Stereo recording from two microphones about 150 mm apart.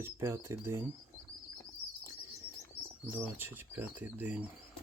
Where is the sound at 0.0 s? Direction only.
15° right (ahead or behind).